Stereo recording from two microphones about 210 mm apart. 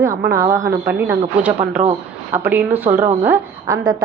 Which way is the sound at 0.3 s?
15° right (ahead or behind).